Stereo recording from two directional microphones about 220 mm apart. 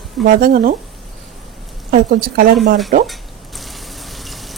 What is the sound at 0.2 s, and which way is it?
Speech, 40° right (ahead or behind).